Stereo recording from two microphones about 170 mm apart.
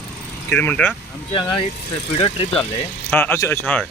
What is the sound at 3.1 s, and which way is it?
Speech, 15° left (ahead or behind).